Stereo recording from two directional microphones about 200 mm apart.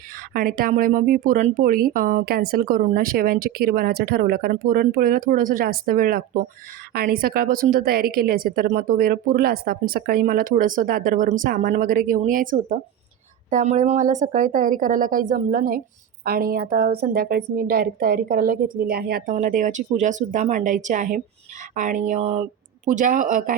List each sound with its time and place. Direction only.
0.3 s speech: 45° right (ahead or behind)